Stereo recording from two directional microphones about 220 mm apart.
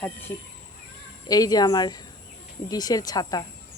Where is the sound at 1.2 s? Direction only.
15° left (ahead or behind).